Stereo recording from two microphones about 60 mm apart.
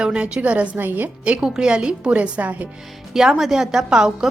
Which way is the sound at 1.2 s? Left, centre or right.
Centre.